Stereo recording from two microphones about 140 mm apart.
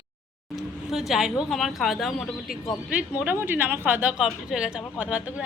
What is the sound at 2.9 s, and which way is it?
A woman's voice, 10° right (ahead or behind).